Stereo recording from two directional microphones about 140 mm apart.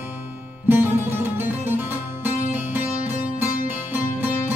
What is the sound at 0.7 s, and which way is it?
Music, 15° right (ahead or behind).